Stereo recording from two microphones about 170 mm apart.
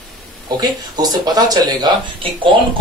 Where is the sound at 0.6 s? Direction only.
25° right (ahead or behind).